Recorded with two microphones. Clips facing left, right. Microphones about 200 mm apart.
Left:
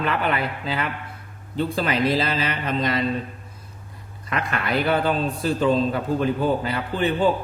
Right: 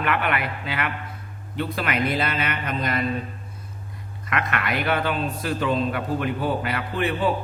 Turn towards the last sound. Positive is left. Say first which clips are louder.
# left 3 dB
turn(degrees=30)  # may be behind; listen again after turning